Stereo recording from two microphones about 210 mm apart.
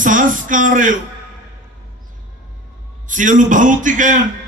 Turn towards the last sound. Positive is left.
turn(degrees=-40)  # may be behind; listen again after turning